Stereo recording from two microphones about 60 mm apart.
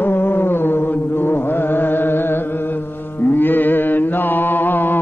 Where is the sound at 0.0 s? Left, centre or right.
Left.